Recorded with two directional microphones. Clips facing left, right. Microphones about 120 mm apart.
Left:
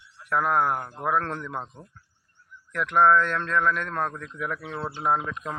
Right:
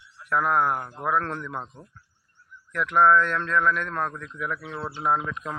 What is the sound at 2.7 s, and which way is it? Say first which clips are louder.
A man's voice: even; 30° left (ahead or behind).